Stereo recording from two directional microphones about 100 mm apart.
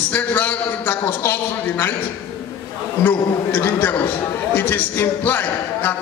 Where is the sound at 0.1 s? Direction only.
20° left (ahead or behind).